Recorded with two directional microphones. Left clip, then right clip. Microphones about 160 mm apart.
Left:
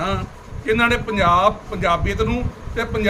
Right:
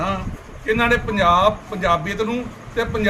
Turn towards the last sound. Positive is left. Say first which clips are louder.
# right 1 dB
turn(degrees=5)  # may be behind; listen again after turning